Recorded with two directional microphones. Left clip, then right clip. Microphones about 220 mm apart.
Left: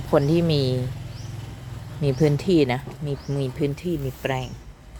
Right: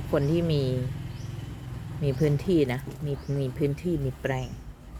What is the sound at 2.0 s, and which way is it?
Speech, 20° left (ahead or behind).